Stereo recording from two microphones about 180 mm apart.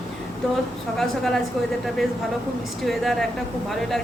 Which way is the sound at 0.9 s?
Centre (ahead or behind).